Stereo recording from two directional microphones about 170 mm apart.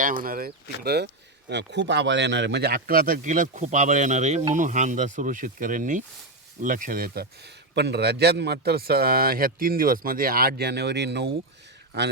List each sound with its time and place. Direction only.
0.0 s a man's voice: 50° right (ahead or behind)
0.9 s a man's voice: 75° right (ahead or behind)